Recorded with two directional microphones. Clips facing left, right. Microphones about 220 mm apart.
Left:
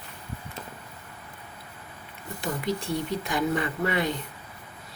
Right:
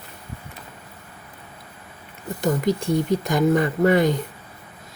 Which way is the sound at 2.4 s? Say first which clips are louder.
Right 8 dB; 45° right (ahead or behind).